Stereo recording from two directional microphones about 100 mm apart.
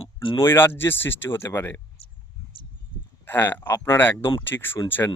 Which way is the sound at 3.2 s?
20° left (ahead or behind).